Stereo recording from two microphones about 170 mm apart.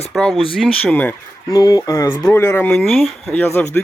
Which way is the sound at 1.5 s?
20° left (ahead or behind).